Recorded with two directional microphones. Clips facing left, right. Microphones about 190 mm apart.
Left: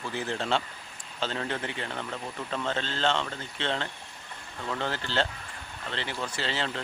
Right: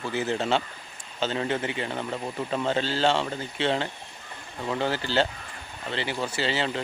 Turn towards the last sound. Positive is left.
turn(degrees=-5)  # may be behind; listen again after turning